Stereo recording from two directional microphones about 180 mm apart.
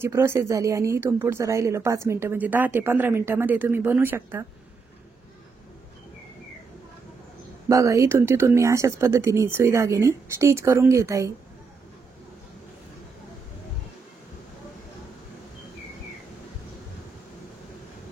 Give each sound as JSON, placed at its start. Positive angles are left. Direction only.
{"t": 0.0, "sound": "a woman's voice", "side_deg": -15}
{"t": 7.6, "sound": "a woman's voice", "side_deg": -15}